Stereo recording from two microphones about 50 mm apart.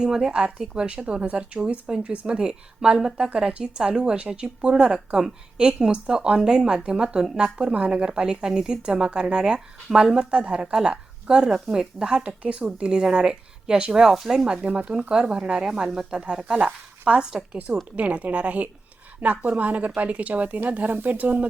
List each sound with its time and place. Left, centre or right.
0.0 s a woman's voice: centre
17.9 s a woman's voice: right